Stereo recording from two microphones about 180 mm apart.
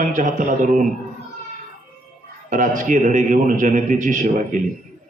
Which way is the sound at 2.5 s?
45° right (ahead or behind).